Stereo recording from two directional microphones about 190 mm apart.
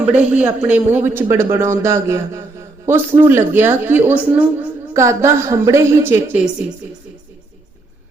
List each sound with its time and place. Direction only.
0.2 s a man's voice: 10° right (ahead or behind)